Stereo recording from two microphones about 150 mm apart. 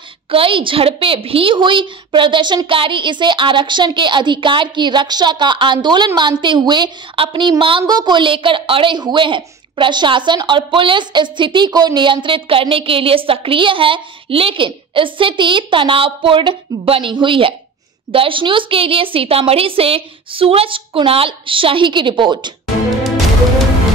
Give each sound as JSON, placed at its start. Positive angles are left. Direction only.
{"t": 0.3, "sound": "a woman's voice", "side_deg": -35}